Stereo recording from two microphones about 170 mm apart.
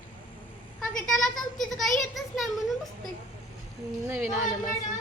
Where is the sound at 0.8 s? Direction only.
Centre (ahead or behind).